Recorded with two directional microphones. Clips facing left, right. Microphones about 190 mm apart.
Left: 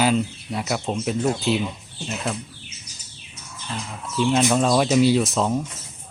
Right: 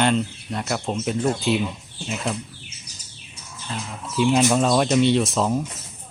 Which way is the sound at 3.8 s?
Centre (ahead or behind).